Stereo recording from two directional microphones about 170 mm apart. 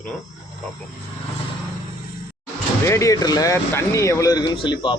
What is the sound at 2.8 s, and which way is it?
Speech, 15° left (ahead or behind).